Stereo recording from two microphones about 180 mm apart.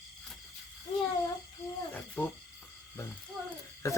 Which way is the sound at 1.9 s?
10° left (ahead or behind).